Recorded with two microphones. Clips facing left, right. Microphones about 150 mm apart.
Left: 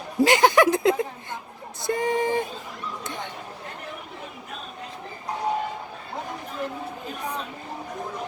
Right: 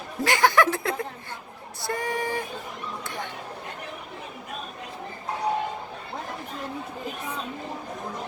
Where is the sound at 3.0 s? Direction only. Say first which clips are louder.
Left 1 dB; 20° left (ahead or behind).